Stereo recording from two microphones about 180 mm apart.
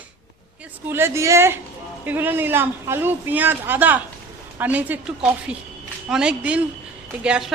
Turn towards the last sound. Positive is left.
turn(degrees=-5)  # may be behind; listen again after turning